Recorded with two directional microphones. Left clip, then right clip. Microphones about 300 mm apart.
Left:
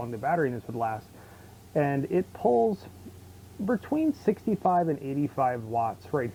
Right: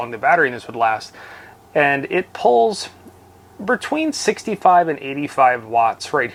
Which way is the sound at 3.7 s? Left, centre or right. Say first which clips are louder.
Right 8 dB; centre.